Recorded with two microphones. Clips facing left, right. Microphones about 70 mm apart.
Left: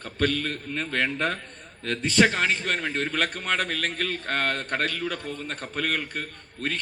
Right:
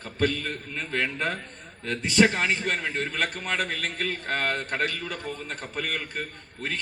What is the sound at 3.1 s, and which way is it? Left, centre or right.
Speech, left.